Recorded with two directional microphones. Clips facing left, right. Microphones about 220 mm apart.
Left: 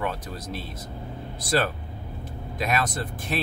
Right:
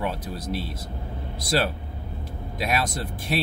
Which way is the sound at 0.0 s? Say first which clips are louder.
Right 1 dB; 10° right (ahead or behind).